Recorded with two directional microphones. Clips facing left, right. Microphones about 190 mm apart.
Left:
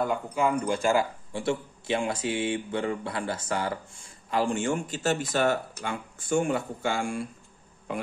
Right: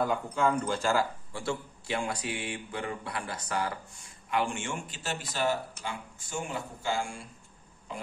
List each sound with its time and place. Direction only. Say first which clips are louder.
0.0 s speech: left 2 dB; 5° left (ahead or behind); by 7.2 s 55° left (ahead or behind)